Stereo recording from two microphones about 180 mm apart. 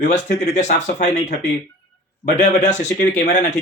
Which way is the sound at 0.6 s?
40° left (ahead or behind).